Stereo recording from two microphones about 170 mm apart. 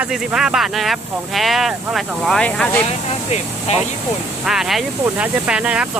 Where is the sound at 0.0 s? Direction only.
5° right (ahead or behind).